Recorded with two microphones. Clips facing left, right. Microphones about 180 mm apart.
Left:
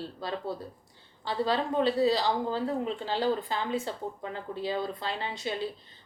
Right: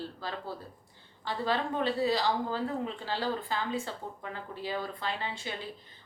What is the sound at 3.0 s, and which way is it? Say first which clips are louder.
A woman's voice: left 4 dB; 20° left (ahead or behind).